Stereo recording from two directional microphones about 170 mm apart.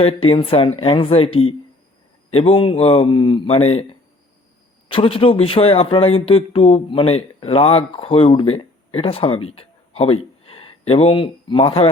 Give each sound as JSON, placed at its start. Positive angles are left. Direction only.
{"t": 0.0, "sound": "speech", "side_deg": 35}
{"t": 4.9, "sound": "speech", "side_deg": 35}